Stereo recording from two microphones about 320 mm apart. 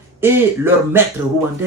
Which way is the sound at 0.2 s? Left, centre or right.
Centre.